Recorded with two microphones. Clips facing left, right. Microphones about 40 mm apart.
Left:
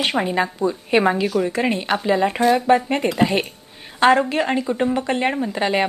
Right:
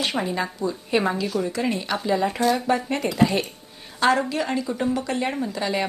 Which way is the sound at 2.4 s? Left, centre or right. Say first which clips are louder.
Left 5 dB; left.